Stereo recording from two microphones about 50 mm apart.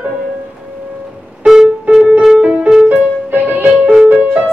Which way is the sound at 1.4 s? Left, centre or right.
Centre.